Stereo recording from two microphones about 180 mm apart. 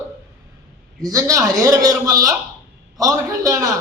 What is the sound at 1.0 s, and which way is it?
A man's voice, 20° right (ahead or behind).